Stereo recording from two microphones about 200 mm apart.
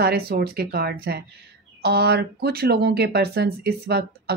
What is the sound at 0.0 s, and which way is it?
Speech, 50° right (ahead or behind).